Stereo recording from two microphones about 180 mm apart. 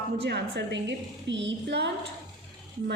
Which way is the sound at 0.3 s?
65° right (ahead or behind).